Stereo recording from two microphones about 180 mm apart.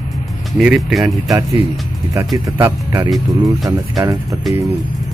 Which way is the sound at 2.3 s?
15° right (ahead or behind).